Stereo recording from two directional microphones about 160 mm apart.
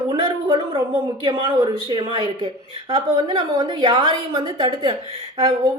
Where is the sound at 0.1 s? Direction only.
20° right (ahead or behind).